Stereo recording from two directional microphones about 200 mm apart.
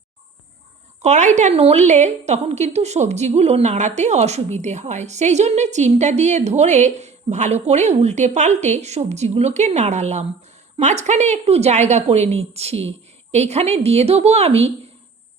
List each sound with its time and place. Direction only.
1.0 s a woman's voice: 35° right (ahead or behind)